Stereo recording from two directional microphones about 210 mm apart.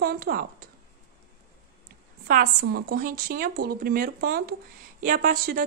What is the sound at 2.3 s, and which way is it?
A woman's voice, 45° right (ahead or behind).